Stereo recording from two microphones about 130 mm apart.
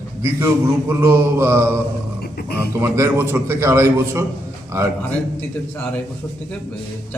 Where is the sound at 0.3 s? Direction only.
20° right (ahead or behind).